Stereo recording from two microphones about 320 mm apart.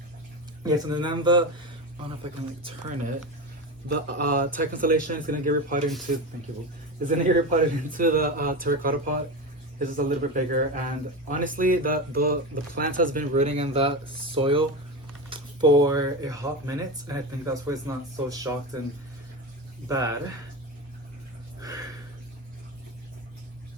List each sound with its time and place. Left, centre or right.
0.6 s speech: centre
3.9 s speech: right
7.1 s speech: right
19.9 s speech: centre